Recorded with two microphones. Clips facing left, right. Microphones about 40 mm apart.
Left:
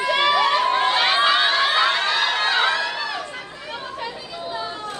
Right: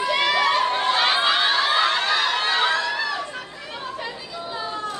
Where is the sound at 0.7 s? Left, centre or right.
Left.